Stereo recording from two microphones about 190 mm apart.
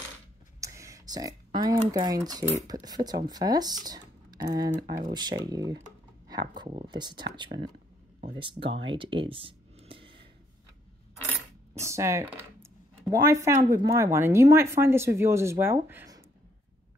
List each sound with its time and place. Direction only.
0.6 s speech: 15° right (ahead or behind)
11.7 s speech: 15° right (ahead or behind)